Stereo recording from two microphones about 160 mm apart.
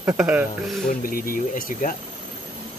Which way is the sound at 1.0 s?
60° left (ahead or behind).